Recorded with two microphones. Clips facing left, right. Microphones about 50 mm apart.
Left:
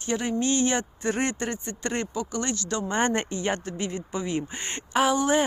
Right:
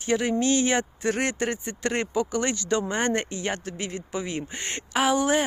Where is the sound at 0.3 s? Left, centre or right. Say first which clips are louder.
Even; right.